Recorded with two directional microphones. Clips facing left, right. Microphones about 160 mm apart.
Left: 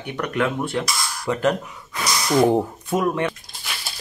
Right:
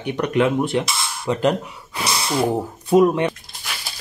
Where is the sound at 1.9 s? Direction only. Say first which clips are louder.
Right 1 dB; 30° right (ahead or behind).